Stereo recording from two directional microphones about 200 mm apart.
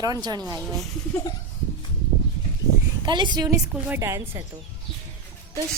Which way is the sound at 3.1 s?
25° right (ahead or behind).